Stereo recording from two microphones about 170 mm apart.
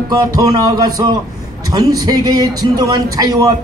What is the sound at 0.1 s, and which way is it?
Speech, 20° right (ahead or behind).